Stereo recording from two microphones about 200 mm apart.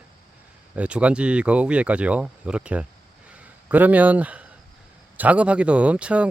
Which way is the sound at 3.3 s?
10° right (ahead or behind).